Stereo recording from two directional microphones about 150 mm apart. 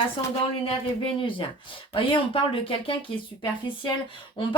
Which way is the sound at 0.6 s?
35° left (ahead or behind).